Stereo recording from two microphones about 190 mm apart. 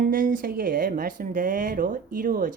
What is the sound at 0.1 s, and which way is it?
Speech, 45° right (ahead or behind).